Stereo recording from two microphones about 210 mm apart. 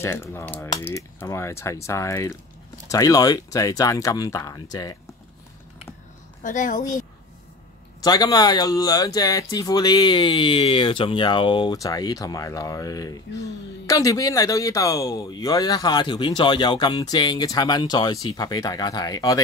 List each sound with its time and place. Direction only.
0.0 s speech: 10° left (ahead or behind)
6.4 s speech: 40° left (ahead or behind)
8.0 s speech: 20° left (ahead or behind)